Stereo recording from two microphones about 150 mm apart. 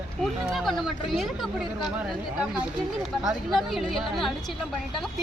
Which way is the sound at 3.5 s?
Centre (ahead or behind).